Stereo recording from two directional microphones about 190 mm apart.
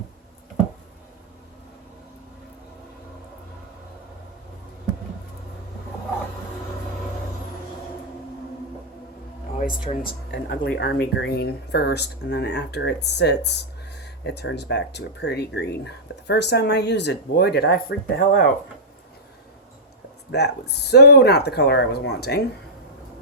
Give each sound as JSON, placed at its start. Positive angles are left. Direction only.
{"t": 9.9, "sound": "speech", "side_deg": 30}
{"t": 10.3, "sound": "speech", "side_deg": 60}
{"t": 20.3, "sound": "speech", "side_deg": 60}